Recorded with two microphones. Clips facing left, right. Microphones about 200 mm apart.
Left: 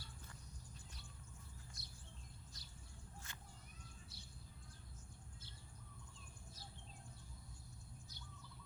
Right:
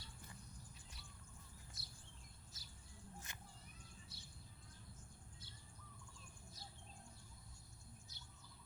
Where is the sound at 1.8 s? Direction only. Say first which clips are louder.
Left 1 dB; centre (ahead or behind).